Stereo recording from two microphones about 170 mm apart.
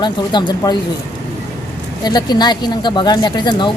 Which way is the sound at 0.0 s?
25° left (ahead or behind).